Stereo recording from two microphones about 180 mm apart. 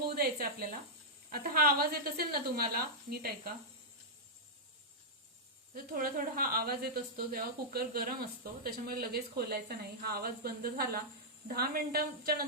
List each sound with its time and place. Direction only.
0.0 s a sound: 55° right (ahead or behind)
1.3 s speech: 55° right (ahead or behind)
5.7 s speech: 50° right (ahead or behind)